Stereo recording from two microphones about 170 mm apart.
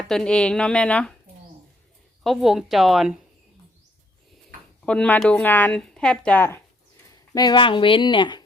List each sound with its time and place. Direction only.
0.1 s speech: 5° left (ahead or behind)
2.2 s speech: centre (ahead or behind)
4.8 s speech: 5° left (ahead or behind)
7.3 s speech: 25° left (ahead or behind)